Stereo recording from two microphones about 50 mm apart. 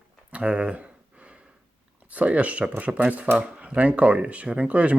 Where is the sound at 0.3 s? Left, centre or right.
Right.